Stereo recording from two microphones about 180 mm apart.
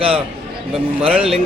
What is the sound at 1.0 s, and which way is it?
Speech, 5° right (ahead or behind).